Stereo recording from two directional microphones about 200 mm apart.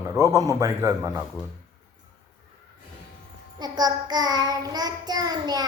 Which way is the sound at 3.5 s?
20° right (ahead or behind).